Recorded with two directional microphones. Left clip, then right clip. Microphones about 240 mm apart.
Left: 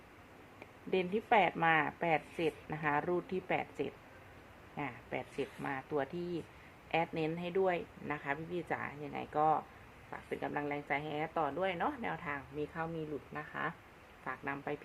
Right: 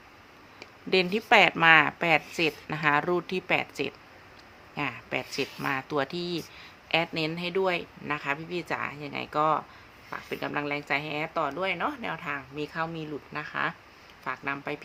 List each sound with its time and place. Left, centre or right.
0.9 s speech: right